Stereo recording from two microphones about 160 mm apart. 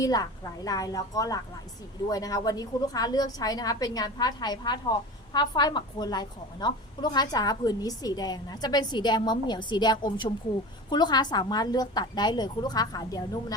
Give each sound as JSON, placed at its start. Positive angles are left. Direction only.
{"t": 0.0, "sound": "a woman's voice", "side_deg": 25}